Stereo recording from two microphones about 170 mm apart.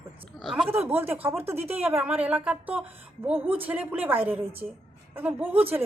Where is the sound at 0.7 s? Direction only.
10° right (ahead or behind).